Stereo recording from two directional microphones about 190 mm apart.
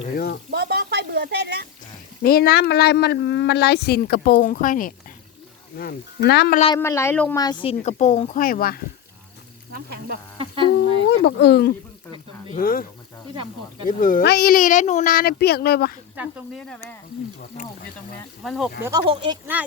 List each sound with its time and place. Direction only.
0.1 s speech: 55° left (ahead or behind)
0.5 s a woman's voice: 55° right (ahead or behind)
2.2 s speech: 55° left (ahead or behind)
6.7 s speech: 15° left (ahead or behind); by 8.8 s 50° left (ahead or behind)
9.7 s a woman's voice: 55° right (ahead or behind)
10.3 s a sound: 30° right (ahead or behind)
11.2 s speech: 65° left (ahead or behind)
12.5 s speech: 50° left (ahead or behind)
13.8 s speech: 45° left (ahead or behind)
16.1 s speech: 5° right (ahead or behind)
18.4 s speech: centre (ahead or behind)
18.8 s speech: 20° right (ahead or behind)